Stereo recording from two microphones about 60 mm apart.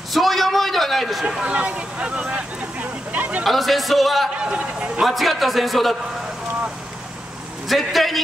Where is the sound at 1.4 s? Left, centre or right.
Right.